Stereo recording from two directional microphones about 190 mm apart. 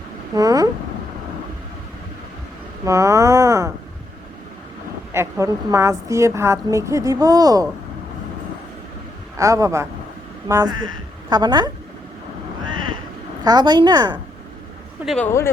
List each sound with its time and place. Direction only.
0.3 s a woman's voice: 20° right (ahead or behind)
2.8 s a woman's voice: 15° right (ahead or behind)
5.1 s a woman's voice: 15° right (ahead or behind)
9.4 s a woman's voice: 15° right (ahead or behind)
13.4 s a woman's voice: 20° right (ahead or behind)
15.0 s speech: centre (ahead or behind)